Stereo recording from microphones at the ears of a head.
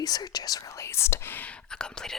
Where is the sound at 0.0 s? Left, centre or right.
Left.